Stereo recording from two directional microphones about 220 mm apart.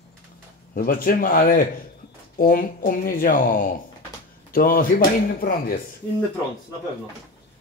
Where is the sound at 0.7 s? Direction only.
40° left (ahead or behind).